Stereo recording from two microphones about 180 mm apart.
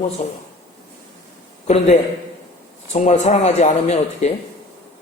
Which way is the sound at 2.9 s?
40° left (ahead or behind).